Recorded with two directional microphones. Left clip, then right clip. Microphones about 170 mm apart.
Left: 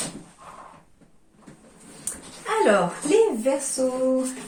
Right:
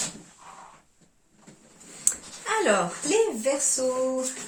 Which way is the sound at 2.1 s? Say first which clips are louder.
Right 9 dB; 35° right (ahead or behind).